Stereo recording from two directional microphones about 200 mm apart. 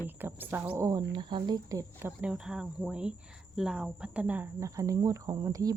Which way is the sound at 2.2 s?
5° right (ahead or behind).